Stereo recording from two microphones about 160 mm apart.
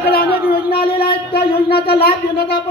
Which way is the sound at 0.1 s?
75° left (ahead or behind).